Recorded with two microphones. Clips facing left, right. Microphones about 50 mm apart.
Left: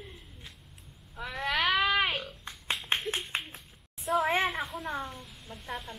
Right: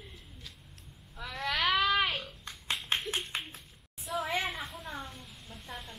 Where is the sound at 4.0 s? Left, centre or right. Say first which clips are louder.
Left 6 dB; centre.